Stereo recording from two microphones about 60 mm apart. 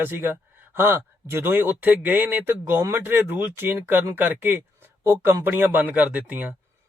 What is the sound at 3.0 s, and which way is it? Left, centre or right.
Speech, right.